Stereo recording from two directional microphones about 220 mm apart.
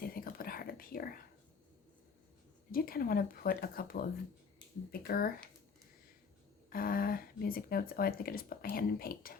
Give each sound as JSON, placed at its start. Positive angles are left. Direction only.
{"t": 0.0, "sound": "whispering", "side_deg": 40}
{"t": 2.7, "sound": "speech", "side_deg": 40}
{"t": 6.7, "sound": "speech", "side_deg": 40}